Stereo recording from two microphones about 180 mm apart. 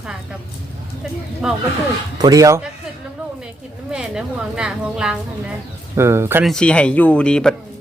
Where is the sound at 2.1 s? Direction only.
20° right (ahead or behind).